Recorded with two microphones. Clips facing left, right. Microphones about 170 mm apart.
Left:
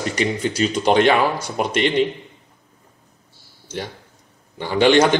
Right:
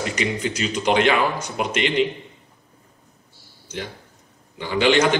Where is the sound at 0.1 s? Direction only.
35° left (ahead or behind).